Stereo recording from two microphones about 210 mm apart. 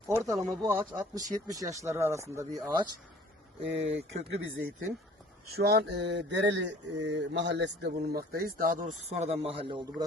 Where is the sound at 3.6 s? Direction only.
60° right (ahead or behind).